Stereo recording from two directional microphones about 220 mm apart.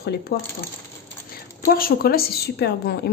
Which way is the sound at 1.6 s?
45° left (ahead or behind).